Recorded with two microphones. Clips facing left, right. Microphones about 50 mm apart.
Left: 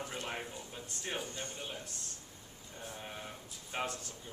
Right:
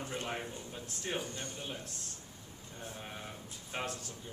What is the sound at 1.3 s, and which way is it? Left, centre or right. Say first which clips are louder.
Speech: even; left.